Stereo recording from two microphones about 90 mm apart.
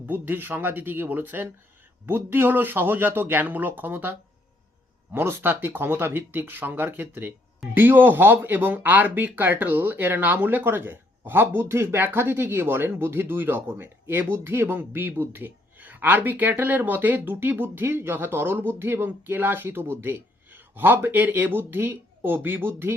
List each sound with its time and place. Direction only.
0.0 s speech: 20° right (ahead or behind)